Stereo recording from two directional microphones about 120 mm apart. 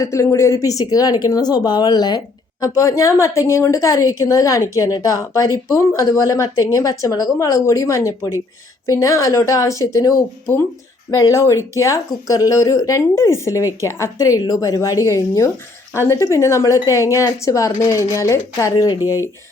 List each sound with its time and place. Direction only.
0.0 s speech: 25° left (ahead or behind)